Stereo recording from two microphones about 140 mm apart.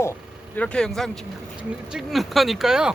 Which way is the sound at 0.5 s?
5° left (ahead or behind).